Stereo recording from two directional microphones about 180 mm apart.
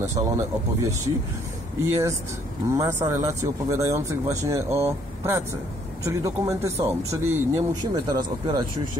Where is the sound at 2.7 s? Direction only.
15° right (ahead or behind).